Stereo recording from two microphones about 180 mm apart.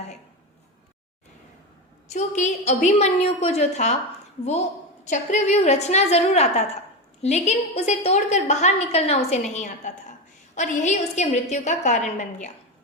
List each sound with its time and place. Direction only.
2.0 s a woman's voice: 40° left (ahead or behind)
5.0 s a woman's voice: 40° left (ahead or behind)